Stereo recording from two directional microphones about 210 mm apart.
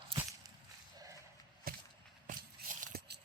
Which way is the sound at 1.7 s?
45° right (ahead or behind).